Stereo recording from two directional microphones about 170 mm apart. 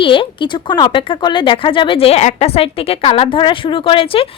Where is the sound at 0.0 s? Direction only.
30° left (ahead or behind).